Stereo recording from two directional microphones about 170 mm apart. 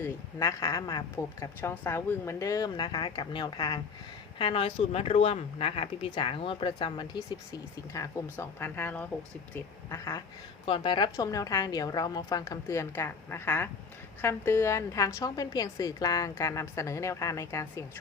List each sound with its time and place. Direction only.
0.0 s a woman's voice: 20° left (ahead or behind)
10.7 s a woman's voice: 30° left (ahead or behind)